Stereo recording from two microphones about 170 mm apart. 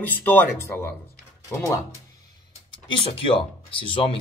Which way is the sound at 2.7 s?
30° left (ahead or behind).